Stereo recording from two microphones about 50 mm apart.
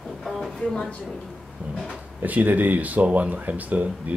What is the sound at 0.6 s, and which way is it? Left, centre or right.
Speech, centre.